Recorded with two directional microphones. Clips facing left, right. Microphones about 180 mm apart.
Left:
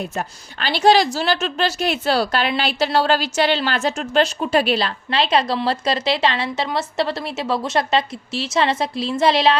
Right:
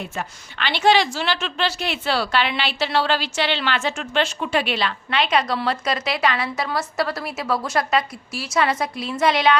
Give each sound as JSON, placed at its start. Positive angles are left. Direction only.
{"t": 0.0, "sound": "a woman's voice", "side_deg": 40}